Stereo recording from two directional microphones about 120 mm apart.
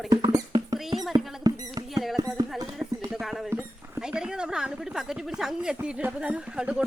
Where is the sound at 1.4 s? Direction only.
30° right (ahead or behind).